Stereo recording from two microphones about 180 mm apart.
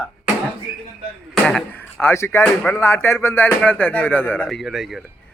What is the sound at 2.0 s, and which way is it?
Speech, 15° left (ahead or behind).